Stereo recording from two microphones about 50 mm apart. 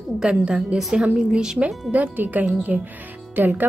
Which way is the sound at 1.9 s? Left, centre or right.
Right.